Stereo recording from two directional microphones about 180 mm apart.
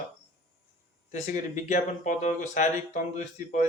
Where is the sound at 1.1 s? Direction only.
40° left (ahead or behind).